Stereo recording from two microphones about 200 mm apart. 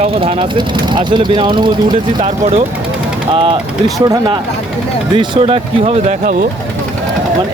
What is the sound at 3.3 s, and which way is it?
Speech, 25° right (ahead or behind).